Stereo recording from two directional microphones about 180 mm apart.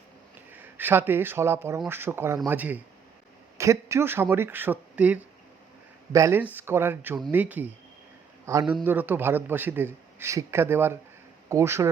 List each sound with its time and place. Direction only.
0.5 s a man's voice: 10° right (ahead or behind)
8.8 s a man's voice: 10° right (ahead or behind)